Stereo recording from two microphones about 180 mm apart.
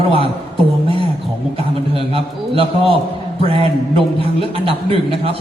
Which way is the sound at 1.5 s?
30° right (ahead or behind).